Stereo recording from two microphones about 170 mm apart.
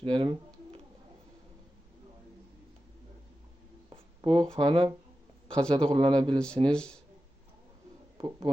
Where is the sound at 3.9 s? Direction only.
30° right (ahead or behind).